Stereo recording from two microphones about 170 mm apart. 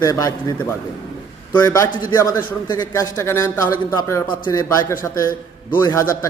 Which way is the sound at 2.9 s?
20° left (ahead or behind).